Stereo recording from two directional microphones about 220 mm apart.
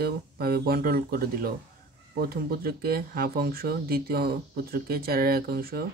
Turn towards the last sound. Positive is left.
turn(degrees=-45)  # may be behind; listen again after turning